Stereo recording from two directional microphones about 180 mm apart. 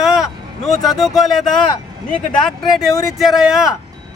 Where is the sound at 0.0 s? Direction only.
Centre (ahead or behind).